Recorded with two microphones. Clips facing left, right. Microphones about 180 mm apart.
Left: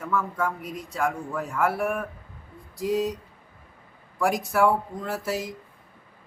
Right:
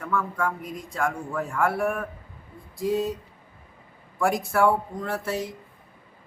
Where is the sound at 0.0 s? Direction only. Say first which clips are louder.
Even; 5° left (ahead or behind).